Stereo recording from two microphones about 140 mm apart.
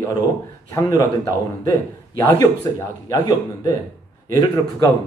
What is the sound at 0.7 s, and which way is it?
A man's voice, 25° left (ahead or behind).